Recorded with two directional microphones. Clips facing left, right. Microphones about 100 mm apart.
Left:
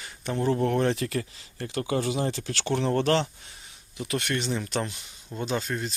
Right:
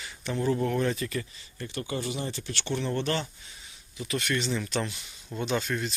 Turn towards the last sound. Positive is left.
turn(degrees=35)  # may be behind; listen again after turning